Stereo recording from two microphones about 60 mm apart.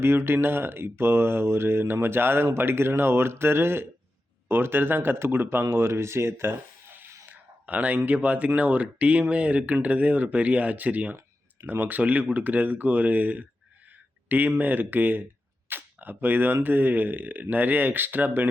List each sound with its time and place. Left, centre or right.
0.0 s speech: right
7.3 s speech: right